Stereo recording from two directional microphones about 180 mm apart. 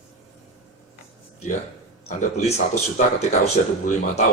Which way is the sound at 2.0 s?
40° left (ahead or behind).